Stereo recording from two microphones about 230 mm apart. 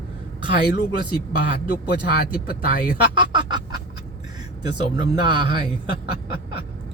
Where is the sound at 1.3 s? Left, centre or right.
Left.